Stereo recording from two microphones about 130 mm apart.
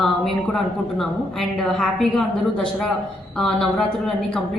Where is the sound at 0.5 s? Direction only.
Centre (ahead or behind).